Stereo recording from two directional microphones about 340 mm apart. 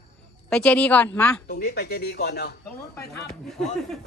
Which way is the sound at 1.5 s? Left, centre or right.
Left.